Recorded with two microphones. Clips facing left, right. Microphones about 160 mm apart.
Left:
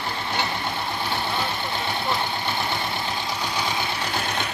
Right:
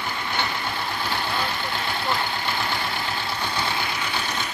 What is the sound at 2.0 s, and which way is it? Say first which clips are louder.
Vehicle: right 1 dB; 20° left (ahead or behind).